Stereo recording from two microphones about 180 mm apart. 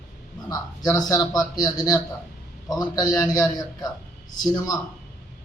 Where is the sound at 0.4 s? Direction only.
20° left (ahead or behind).